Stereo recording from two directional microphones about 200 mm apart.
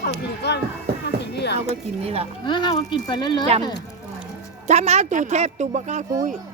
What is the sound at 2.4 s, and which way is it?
Speech, 25° left (ahead or behind).